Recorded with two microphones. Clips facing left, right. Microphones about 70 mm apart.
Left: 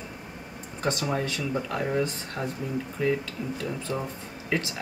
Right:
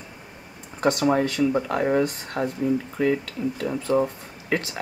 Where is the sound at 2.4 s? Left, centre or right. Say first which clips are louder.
Right 8 dB; right.